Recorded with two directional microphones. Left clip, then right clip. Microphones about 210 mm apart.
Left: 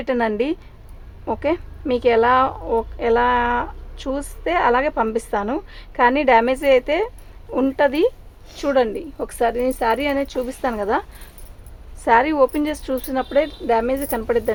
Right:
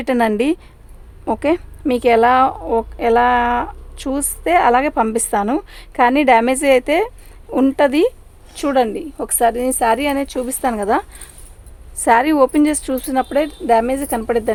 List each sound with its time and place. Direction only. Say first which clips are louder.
0.0 s a woman's voice: right 4 dB; 40° right (ahead or behind)